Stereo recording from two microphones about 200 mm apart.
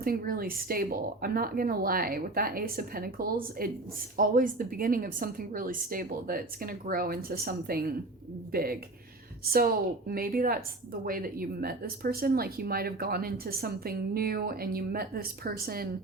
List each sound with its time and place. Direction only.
0.0 s speech: 50° right (ahead or behind)